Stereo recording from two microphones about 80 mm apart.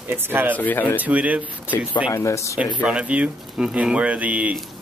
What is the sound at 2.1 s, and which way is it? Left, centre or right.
Speech, left.